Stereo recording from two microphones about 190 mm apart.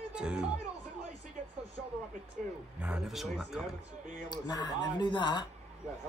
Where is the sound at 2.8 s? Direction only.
5° right (ahead or behind).